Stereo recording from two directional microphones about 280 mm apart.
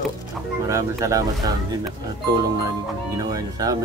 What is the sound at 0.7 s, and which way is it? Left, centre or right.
Speech, centre.